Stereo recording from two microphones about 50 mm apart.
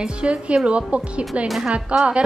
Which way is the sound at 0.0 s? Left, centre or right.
Right.